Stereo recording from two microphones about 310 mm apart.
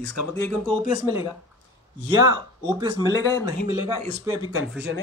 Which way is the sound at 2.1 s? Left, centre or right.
Centre.